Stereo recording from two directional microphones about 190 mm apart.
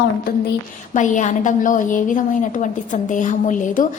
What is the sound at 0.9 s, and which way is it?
A woman's voice, 40° left (ahead or behind).